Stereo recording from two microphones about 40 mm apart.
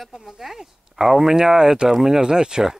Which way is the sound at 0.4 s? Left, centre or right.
Centre.